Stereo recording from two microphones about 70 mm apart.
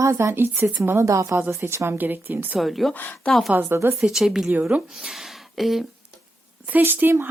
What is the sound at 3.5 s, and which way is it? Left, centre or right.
Speech, right.